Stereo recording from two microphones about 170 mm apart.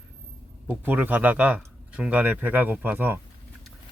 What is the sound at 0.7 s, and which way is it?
Speech, 10° right (ahead or behind).